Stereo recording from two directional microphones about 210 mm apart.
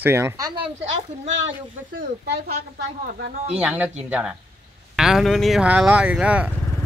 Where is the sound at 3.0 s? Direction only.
50° right (ahead or behind).